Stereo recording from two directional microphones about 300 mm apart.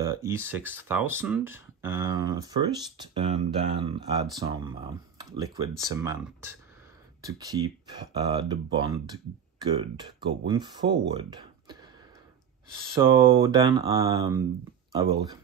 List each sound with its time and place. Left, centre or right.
0.0 s speech: centre
13.0 s speech: centre